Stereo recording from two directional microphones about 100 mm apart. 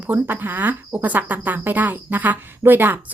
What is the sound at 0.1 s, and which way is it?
Speech, 20° right (ahead or behind).